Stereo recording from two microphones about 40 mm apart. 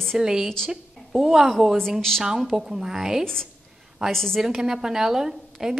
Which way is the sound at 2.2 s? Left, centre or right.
Centre.